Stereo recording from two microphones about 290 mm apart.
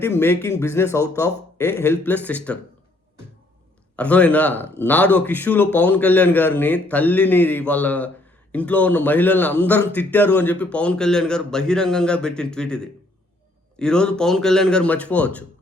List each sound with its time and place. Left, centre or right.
0.0 s a man's voice: centre
3.9 s a man's voice: centre